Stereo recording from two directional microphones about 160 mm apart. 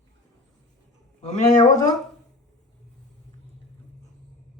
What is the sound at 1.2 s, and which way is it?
Speech, 45° left (ahead or behind).